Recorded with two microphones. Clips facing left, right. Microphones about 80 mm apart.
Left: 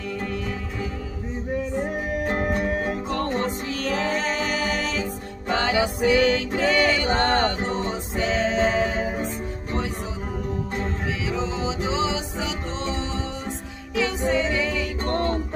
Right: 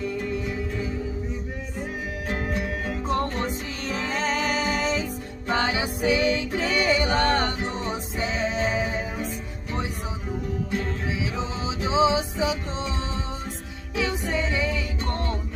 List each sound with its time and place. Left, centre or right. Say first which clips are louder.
2.2 s music: left 4 dB; left
4.5 s music: right 1 dB; right
7.1 s music: left 2 dB; left
8.2 s music: left 5 dB; centre
8.5 s music: left 4 dB; left
11.9 s music: right 4 dB; centre
15.0 s music: left 7 dB; left